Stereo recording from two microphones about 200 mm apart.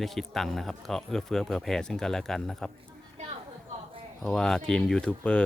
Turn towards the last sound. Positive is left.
turn(degrees=5)  # may be behind; listen again after turning